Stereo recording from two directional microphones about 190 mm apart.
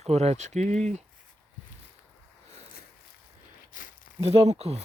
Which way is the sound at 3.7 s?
45° left (ahead or behind).